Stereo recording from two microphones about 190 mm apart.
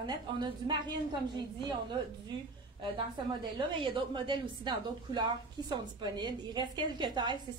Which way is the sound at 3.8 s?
25° right (ahead or behind).